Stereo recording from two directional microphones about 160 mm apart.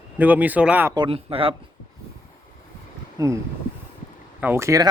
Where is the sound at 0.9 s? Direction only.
30° right (ahead or behind).